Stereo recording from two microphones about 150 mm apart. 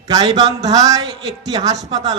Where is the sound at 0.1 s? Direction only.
25° right (ahead or behind).